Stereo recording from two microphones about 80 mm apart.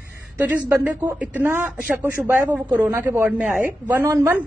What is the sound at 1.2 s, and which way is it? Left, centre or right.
A woman's voice, right.